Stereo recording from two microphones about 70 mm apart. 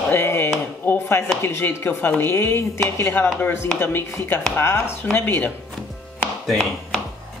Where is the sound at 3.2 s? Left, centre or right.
Left.